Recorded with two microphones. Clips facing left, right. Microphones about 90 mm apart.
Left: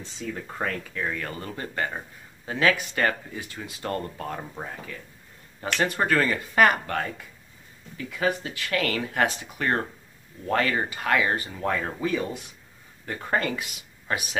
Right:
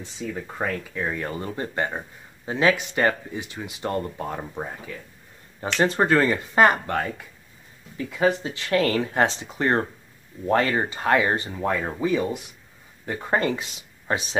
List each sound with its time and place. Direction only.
0.0 s speech: 10° right (ahead or behind)
5.8 s speech: 25° right (ahead or behind)
8.1 s speech: 25° right (ahead or behind)
11.6 s speech: 15° right (ahead or behind)